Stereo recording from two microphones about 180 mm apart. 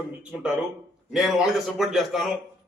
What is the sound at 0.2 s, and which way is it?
A man's voice, 5° right (ahead or behind).